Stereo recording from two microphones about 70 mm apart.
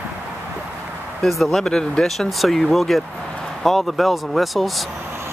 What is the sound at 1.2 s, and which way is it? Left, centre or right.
Speech, centre.